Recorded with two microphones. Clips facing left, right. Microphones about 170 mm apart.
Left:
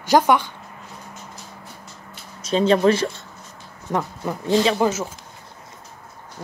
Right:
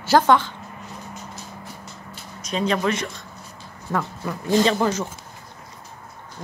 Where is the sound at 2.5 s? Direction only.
30° left (ahead or behind).